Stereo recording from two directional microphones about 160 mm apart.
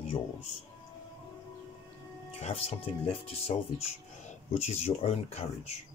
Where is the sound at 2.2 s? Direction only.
40° left (ahead or behind).